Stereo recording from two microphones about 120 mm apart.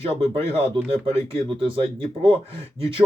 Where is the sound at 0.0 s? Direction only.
55° right (ahead or behind).